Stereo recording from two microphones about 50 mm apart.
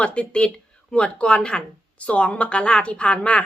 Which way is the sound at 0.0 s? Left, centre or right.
Left.